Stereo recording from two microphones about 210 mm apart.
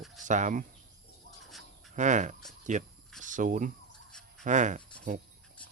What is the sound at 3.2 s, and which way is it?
Cricket, 35° right (ahead or behind).